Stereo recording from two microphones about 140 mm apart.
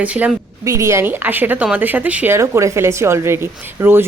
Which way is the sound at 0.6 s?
20° right (ahead or behind).